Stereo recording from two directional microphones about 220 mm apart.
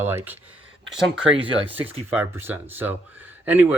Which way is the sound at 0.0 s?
10° right (ahead or behind).